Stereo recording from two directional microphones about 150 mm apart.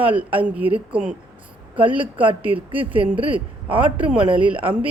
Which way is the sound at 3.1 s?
35° right (ahead or behind).